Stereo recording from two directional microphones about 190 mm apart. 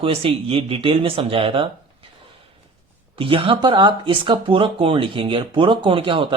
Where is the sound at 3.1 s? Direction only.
25° right (ahead or behind).